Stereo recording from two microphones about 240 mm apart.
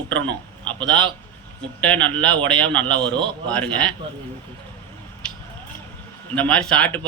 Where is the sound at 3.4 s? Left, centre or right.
Centre.